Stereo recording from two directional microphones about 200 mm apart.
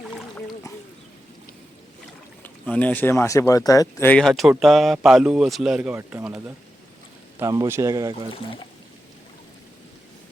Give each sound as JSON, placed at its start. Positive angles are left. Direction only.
{"t": 0.1, "sound": "boat", "side_deg": 0}
{"t": 2.4, "sound": "speech", "side_deg": 5}